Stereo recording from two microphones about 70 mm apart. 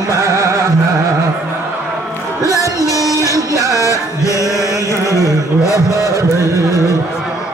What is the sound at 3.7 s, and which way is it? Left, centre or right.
Music, left.